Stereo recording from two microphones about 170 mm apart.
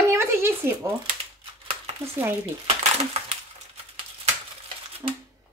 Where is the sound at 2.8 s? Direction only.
35° right (ahead or behind).